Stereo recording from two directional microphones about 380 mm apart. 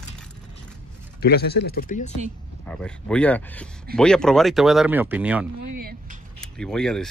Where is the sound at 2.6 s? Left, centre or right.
Centre.